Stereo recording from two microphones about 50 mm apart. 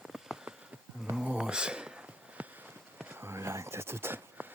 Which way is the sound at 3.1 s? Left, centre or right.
Right.